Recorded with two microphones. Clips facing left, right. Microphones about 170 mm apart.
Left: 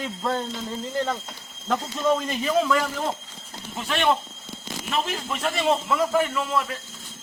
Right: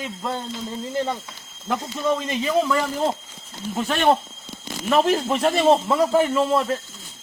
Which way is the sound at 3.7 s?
40° right (ahead or behind).